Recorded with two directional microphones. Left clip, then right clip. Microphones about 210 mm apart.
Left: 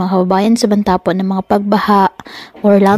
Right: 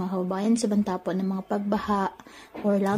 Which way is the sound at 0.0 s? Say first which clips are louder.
Left 16 dB; 40° left (ahead or behind).